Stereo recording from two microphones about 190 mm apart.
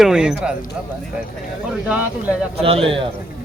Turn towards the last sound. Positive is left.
turn(degrees=-30)  # may be behind; listen again after turning